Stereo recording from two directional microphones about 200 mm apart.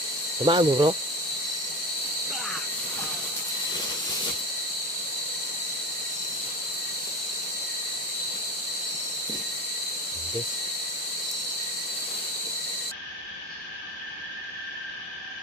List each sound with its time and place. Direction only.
0.4 s speech: 25° right (ahead or behind)